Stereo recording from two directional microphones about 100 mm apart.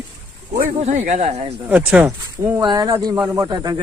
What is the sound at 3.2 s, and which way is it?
Speech, 40° right (ahead or behind).